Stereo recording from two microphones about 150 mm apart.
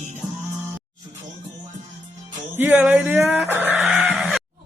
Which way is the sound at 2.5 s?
15° right (ahead or behind).